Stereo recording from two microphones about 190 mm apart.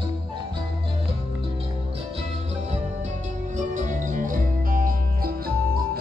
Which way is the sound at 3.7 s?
40° right (ahead or behind).